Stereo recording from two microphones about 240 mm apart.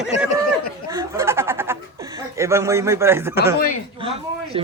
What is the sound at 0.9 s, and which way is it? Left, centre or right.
Speech, centre.